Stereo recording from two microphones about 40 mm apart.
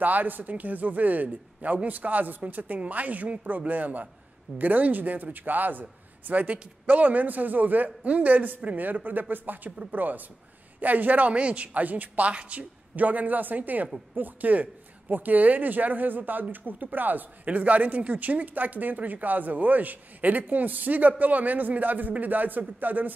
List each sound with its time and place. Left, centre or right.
0.0 s speech: right
9.7 s speech: right
9.9 s speech: right
11.3 s speech: right